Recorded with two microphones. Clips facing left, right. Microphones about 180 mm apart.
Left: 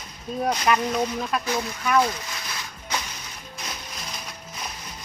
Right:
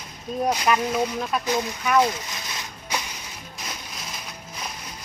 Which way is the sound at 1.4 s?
15° right (ahead or behind).